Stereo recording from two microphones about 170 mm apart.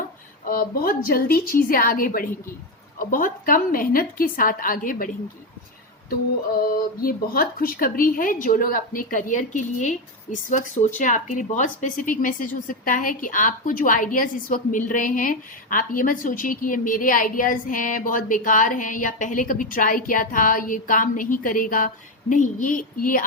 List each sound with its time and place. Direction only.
0.4 s speech: 60° left (ahead or behind)
6.6 s speech: 60° left (ahead or behind)